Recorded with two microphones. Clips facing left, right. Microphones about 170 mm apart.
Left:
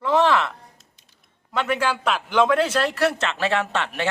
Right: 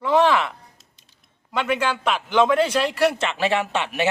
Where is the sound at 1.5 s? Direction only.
5° left (ahead or behind).